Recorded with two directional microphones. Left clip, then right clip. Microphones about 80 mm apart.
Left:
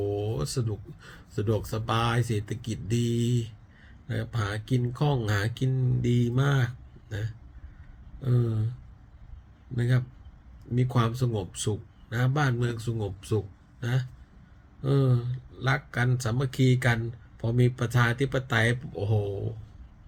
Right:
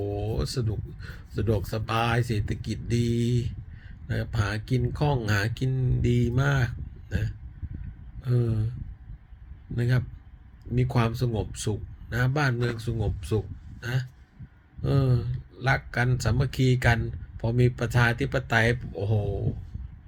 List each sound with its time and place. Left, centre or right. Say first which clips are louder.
0.0 s speech: left 1 dB; left
4.0 s a man's voice: right 2 dB; left
9.7 s a man's voice: right 1 dB; left
18.9 s speech: even; left